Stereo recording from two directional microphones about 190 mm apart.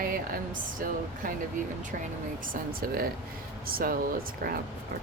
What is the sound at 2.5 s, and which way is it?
Speech, 50° right (ahead or behind).